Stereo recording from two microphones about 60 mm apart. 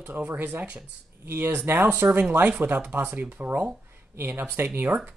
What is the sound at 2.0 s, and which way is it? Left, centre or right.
Speech, right.